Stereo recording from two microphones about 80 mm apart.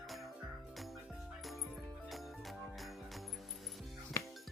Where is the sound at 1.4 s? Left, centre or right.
Centre.